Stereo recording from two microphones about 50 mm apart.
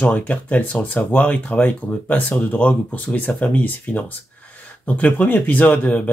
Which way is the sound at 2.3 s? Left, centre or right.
Left.